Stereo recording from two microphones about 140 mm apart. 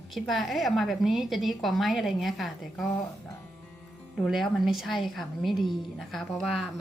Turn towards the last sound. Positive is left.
turn(degrees=0)  # may be behind; listen again after turning